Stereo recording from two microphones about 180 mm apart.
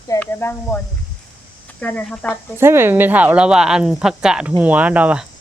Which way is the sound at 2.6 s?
15° right (ahead or behind).